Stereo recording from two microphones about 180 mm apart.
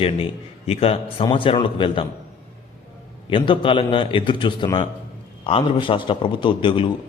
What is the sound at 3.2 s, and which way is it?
A man's voice, 30° left (ahead or behind).